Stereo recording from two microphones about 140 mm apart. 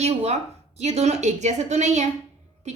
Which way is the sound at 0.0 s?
50° right (ahead or behind).